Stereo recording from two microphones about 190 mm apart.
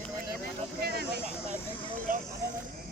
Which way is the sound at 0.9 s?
55° right (ahead or behind).